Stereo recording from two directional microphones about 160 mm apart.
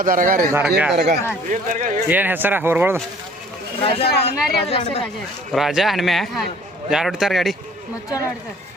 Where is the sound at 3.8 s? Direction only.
35° left (ahead or behind).